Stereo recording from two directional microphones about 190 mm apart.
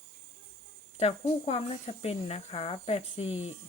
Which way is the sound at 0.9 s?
35° left (ahead or behind).